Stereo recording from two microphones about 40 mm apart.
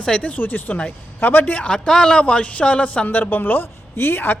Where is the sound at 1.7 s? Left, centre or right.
Centre.